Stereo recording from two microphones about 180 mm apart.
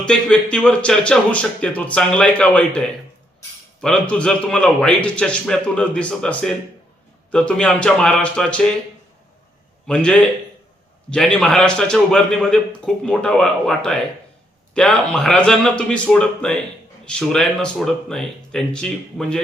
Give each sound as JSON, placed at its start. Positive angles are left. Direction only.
{"t": 0.0, "sound": "a man's voice", "side_deg": 5}
{"t": 9.8, "sound": "a man's voice", "side_deg": 5}